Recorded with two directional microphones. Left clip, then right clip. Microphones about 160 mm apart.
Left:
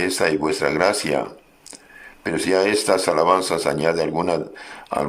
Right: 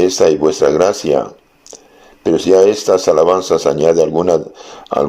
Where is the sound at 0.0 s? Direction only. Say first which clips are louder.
Right 9 dB; 15° right (ahead or behind).